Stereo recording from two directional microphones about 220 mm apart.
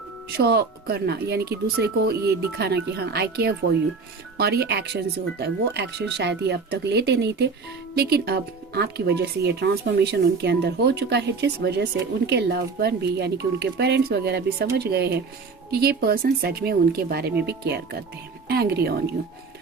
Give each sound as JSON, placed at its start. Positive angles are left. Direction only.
{"t": 0.3, "sound": "speech", "side_deg": -45}